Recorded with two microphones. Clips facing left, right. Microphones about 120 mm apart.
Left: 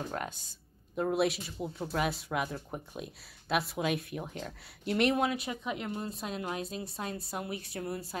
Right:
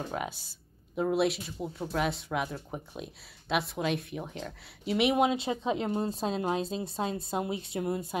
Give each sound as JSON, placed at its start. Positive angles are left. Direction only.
{"t": 0.1, "sound": "speech", "side_deg": -5}
{"t": 5.1, "sound": "a woman's voice", "side_deg": -20}